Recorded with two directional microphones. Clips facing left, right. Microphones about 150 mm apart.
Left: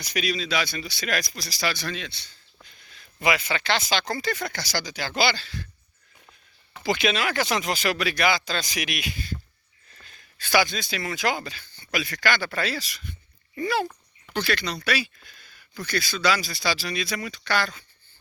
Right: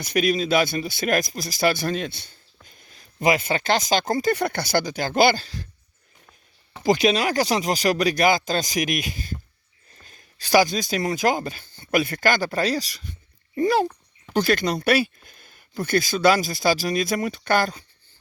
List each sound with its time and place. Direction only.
0.0 s speech: 50° right (ahead or behind)
4.4 s speech: 55° right (ahead or behind); by 5.6 s 40° right (ahead or behind)
6.7 s speech: 40° right (ahead or behind)